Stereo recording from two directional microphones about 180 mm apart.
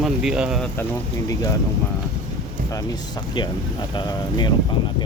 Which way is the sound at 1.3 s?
20° left (ahead or behind).